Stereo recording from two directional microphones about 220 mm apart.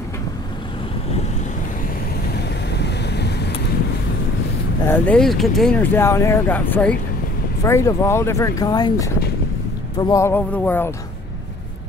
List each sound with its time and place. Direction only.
2.3 s vehicle: 50° left (ahead or behind)
4.8 s speech: 10° left (ahead or behind)